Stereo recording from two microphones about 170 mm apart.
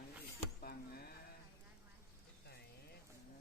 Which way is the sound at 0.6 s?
65° left (ahead or behind).